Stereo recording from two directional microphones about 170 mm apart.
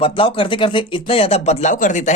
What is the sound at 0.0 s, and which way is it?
Speech, 30° left (ahead or behind).